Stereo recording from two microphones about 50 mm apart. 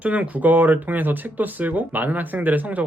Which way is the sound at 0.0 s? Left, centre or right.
Right.